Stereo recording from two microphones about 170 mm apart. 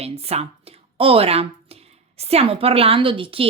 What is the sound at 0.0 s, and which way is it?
A woman's voice, 35° right (ahead or behind).